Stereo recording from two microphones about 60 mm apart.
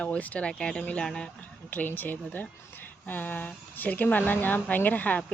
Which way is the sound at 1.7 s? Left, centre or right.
Left.